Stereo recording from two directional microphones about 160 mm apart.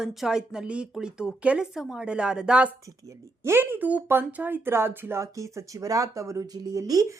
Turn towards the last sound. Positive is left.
turn(degrees=-20)  # may be behind; listen again after turning